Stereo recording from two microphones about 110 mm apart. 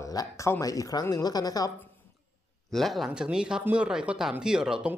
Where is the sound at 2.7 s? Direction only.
Centre (ahead or behind).